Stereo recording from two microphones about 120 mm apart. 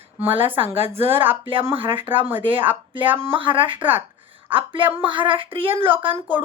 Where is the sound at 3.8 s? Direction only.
15° right (ahead or behind).